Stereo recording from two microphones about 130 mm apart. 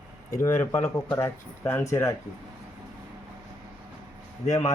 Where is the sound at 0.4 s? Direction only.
15° left (ahead or behind).